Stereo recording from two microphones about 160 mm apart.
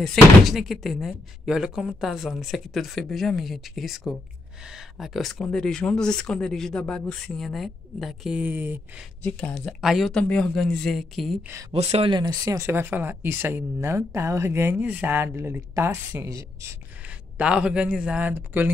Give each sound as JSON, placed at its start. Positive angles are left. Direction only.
{"t": 0.0, "sound": "speech", "side_deg": 0}
{"t": 9.2, "sound": "speech", "side_deg": 5}
{"t": 11.7, "sound": "speech", "side_deg": -40}
{"t": 17.4, "sound": "speech", "side_deg": -5}